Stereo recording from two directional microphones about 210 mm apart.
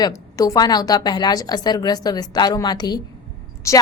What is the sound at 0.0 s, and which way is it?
A woman's voice, 15° left (ahead or behind).